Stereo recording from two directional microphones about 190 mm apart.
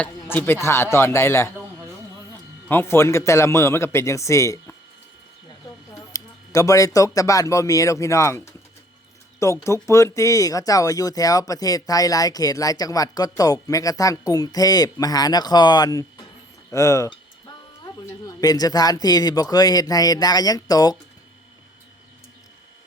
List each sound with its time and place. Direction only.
0.0 s a man's voice: 10° left (ahead or behind)
2.6 s a man's voice: 10° left (ahead or behind)
6.1 s a man's voice: 15° left (ahead or behind)